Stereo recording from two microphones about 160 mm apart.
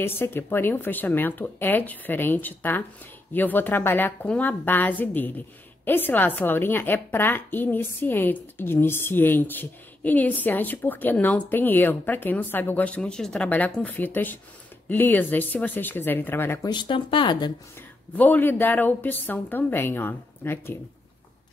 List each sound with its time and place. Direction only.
0.0 s a woman's voice: 15° left (ahead or behind)
16.7 s speech: 30° left (ahead or behind)
18.1 s a woman's voice: 10° left (ahead or behind)